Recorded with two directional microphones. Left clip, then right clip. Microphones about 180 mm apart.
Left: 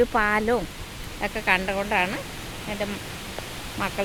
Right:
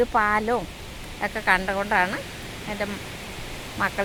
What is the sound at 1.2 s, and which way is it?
Speech, 15° left (ahead or behind).